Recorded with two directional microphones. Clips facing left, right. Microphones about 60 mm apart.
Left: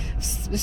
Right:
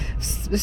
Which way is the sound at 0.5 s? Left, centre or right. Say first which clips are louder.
Right 5 dB; right.